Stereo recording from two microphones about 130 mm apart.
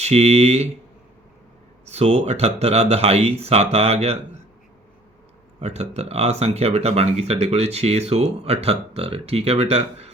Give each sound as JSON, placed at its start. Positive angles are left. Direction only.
{"t": 0.0, "sound": "speech", "side_deg": -55}
{"t": 1.9, "sound": "speech", "side_deg": -55}
{"t": 5.5, "sound": "speech", "side_deg": -55}